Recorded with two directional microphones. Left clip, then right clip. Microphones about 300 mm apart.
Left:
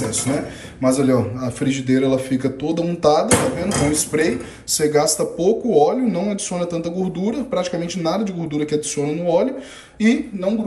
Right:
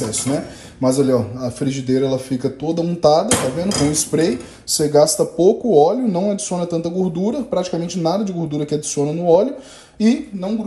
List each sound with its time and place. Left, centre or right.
0.8 s speech: centre
3.3 s dishes: centre
3.9 s speech: centre